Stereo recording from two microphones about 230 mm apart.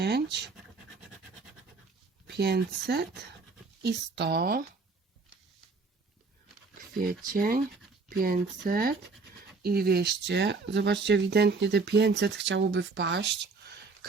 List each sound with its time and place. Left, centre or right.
0.0 s speech: right
2.2 s speech: right
6.9 s speech: right